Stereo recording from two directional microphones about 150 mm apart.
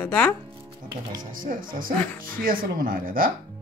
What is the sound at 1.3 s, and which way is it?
Speech, 65° right (ahead or behind).